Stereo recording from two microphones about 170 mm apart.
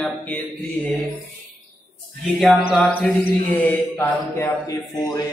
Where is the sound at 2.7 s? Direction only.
5° left (ahead or behind).